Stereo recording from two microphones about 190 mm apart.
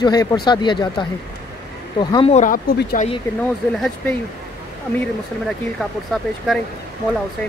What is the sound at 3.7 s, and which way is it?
Speech, centre (ahead or behind).